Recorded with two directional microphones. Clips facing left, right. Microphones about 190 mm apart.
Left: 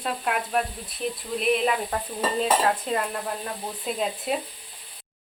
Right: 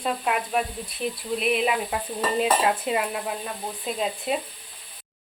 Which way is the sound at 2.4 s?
10° right (ahead or behind).